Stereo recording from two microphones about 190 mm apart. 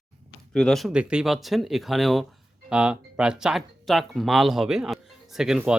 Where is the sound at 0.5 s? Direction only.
5° left (ahead or behind).